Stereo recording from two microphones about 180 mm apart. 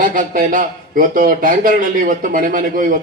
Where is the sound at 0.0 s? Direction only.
50° right (ahead or behind).